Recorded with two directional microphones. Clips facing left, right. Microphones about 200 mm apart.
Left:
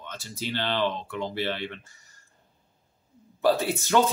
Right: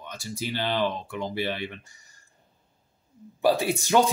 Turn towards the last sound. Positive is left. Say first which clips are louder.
# right 1 dB
turn(degrees=-15)  # may be behind; listen again after turning